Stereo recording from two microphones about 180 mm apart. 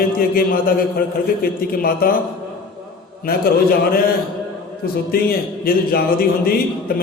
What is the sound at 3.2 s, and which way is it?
A man's voice, 55° left (ahead or behind).